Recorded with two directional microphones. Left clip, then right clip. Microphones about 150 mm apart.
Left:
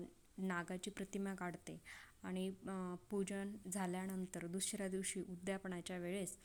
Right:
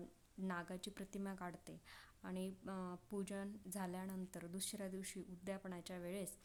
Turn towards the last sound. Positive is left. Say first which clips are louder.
# left 3 dB
turn(degrees=10)  # may be behind; listen again after turning